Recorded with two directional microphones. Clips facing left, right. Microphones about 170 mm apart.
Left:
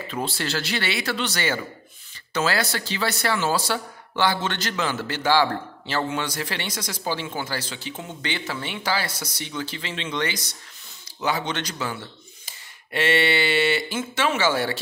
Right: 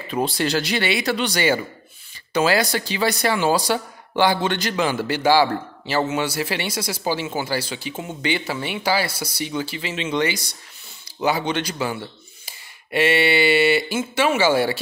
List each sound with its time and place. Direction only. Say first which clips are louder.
0.1 s speech: right 7 dB; 15° right (ahead or behind)